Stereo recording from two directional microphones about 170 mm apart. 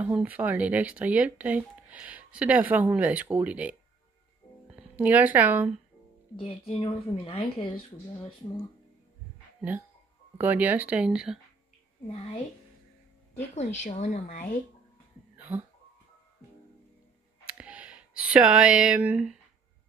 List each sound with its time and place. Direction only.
0.0 s a woman's voice: 10° right (ahead or behind)
6.3 s a woman's voice: 30° left (ahead or behind)
10.3 s speech: 10° right (ahead or behind)
13.4 s a woman's voice: 40° left (ahead or behind)
15.3 s a sound: 10° right (ahead or behind)
17.5 s speech: 5° right (ahead or behind)